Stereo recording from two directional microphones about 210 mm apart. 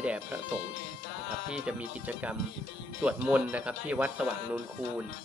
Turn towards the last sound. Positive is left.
turn(degrees=-5)  # may be behind; listen again after turning